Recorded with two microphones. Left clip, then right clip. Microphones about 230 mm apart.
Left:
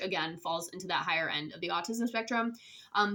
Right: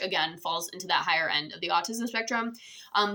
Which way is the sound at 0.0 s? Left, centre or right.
Centre.